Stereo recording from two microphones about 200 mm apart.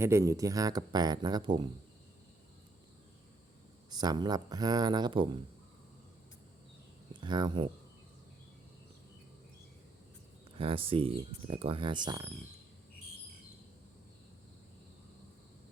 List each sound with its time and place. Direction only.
0.0 s speech: 15° right (ahead or behind)
3.8 s speech: 20° right (ahead or behind)
7.1 s speech: 25° right (ahead or behind)
10.6 s speech: 25° right (ahead or behind)